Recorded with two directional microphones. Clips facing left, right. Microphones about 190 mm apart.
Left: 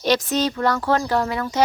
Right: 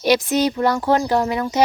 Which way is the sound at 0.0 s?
10° right (ahead or behind).